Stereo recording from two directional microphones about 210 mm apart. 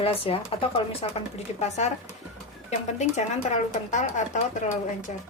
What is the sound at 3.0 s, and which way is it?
Speech, 35° left (ahead or behind).